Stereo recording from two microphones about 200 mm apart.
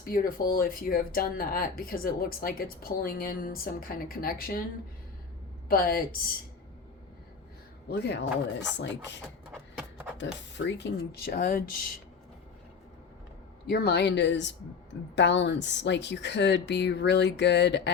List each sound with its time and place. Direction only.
0.0 s speech: 45° left (ahead or behind)
5.6 s speech: 45° left (ahead or behind)
7.9 s speech: 55° left (ahead or behind)
10.7 s speech: 55° left (ahead or behind)
13.7 s speech: 55° left (ahead or behind)